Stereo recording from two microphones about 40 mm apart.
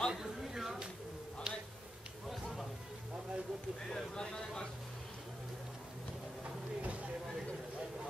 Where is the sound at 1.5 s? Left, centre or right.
Right.